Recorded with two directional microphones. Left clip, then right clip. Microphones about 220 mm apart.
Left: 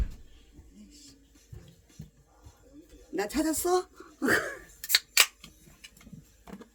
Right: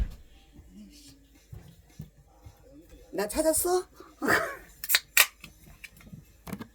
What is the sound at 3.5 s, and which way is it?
Speech, 30° left (ahead or behind).